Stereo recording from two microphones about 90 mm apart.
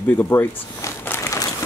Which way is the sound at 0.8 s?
30° left (ahead or behind).